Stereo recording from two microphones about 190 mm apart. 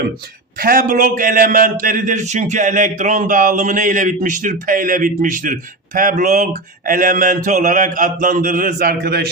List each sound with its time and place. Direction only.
0.6 s speech: 50° right (ahead or behind)